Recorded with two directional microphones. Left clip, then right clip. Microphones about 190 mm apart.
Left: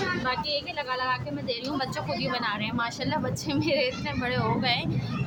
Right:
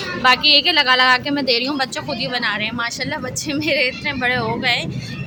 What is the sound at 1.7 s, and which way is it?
A woman's voice, 15° right (ahead or behind).